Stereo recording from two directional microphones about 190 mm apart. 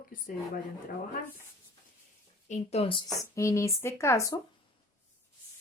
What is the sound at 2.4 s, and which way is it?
Speech, 35° left (ahead or behind).